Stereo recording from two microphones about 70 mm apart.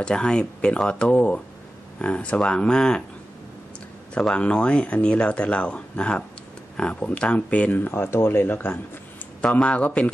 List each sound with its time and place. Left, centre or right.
0.0 s speech: centre
4.1 s speech: centre
7.7 s speech: left
9.4 s speech: centre